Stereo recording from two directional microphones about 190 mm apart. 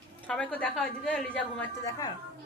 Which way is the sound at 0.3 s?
5° left (ahead or behind).